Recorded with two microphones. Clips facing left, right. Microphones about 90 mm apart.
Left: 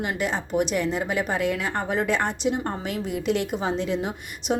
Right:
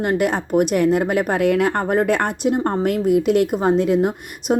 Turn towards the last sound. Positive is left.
turn(degrees=-50)  # may be behind; listen again after turning